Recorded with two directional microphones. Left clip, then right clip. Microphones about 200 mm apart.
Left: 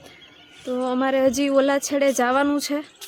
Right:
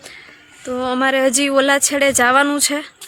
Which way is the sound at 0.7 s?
Centre (ahead or behind).